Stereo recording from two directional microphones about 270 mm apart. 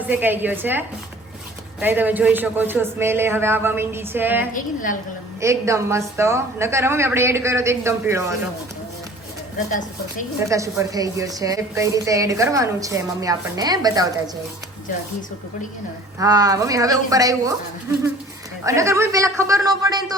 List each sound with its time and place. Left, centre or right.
0.0 s a woman's voice: centre
4.5 s a woman's voice: left
5.4 s a woman's voice: centre
10.5 s a woman's voice: centre
16.1 s a woman's voice: centre
18.6 s a woman's voice: centre